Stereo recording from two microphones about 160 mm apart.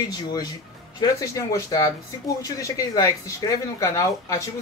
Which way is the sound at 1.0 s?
20° left (ahead or behind).